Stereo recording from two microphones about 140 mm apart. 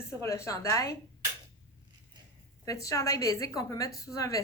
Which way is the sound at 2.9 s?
25° left (ahead or behind).